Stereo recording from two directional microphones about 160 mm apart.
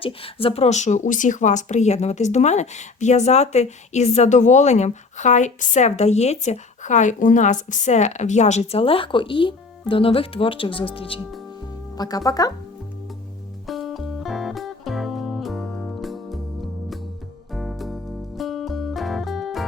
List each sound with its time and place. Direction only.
0.0 s speech: 35° left (ahead or behind)
11.9 s speech: 25° left (ahead or behind)
13.7 s music: centre (ahead or behind)
17.5 s music: centre (ahead or behind)